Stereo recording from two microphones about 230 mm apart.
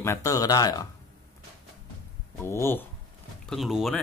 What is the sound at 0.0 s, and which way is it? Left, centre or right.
Speech, centre.